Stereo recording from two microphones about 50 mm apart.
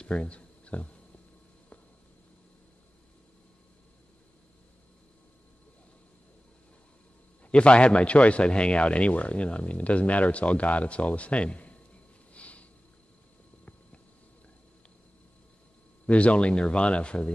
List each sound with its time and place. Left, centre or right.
0.0 s a sound: left
7.5 s a man's voice: left
12.4 s sniff: left
16.1 s a man's voice: left